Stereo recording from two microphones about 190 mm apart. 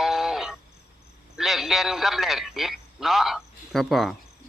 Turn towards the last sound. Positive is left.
turn(degrees=0)  # may be behind; listen again after turning